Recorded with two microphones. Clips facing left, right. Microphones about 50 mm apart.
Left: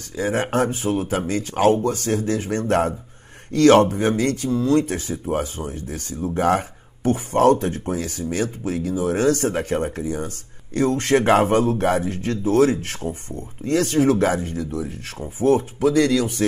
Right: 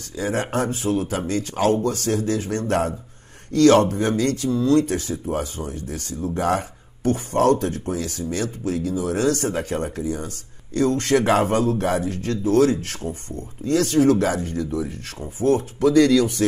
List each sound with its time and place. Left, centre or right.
0.1 s speech: left
14.5 s speech: centre
15.1 s speech: centre
15.8 s speech: centre